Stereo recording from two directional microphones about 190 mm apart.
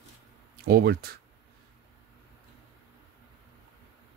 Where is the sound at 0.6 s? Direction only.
55° right (ahead or behind).